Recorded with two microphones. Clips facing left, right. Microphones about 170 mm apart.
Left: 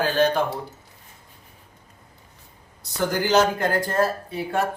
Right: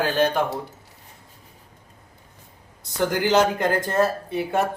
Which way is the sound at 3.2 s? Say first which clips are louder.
Even; 20° right (ahead or behind).